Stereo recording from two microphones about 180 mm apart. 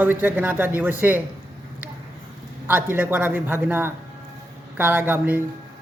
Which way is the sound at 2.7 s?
10° right (ahead or behind).